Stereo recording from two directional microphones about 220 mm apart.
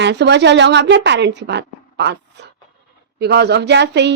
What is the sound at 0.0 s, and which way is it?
A woman's voice, 50° right (ahead or behind).